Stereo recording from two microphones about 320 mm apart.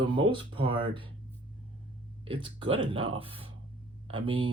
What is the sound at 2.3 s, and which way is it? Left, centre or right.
Speech, centre.